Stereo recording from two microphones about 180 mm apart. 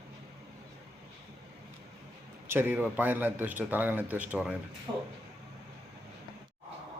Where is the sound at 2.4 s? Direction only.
10° right (ahead or behind).